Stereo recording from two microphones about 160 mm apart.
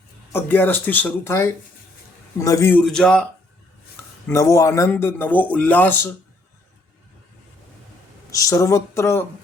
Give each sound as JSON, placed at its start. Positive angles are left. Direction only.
{"t": 0.3, "sound": "speech", "side_deg": 10}
{"t": 2.8, "sound": "speech", "side_deg": 5}
{"t": 4.3, "sound": "speech", "side_deg": 20}
{"t": 8.3, "sound": "speech", "side_deg": 20}